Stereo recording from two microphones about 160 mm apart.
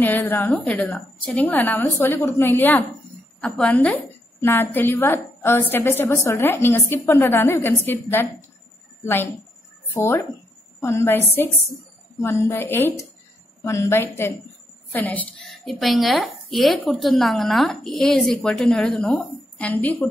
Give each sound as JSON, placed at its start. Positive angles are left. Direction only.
{"t": 0.0, "sound": "a woman's voice", "side_deg": 10}